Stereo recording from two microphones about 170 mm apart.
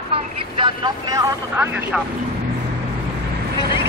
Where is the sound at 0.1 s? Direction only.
30° right (ahead or behind).